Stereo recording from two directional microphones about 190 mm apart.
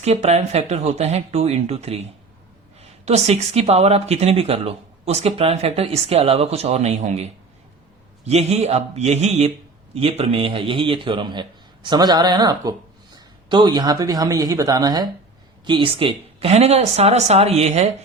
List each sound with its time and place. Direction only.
0.0 s speech: 35° right (ahead or behind)
3.1 s a man's voice: 35° right (ahead or behind)